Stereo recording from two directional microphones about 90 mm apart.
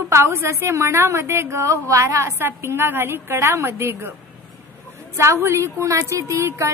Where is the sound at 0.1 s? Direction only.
30° right (ahead or behind).